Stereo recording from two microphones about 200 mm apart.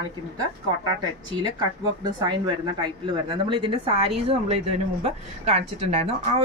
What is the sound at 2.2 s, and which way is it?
A woman's voice, 25° right (ahead or behind).